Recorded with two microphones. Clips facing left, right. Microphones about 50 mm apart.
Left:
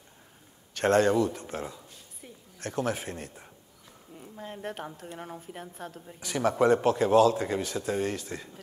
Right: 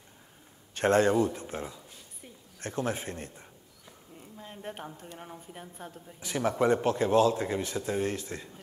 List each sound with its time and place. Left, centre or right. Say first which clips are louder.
0.7 s a man's voice: left 1 dB; centre
4.4 s a sound: left 6 dB; left
5.0 s speech: left 4 dB; centre
5.6 s a man's voice: left 3 dB; centre